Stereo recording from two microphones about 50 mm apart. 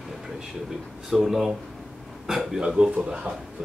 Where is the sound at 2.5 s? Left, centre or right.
Centre.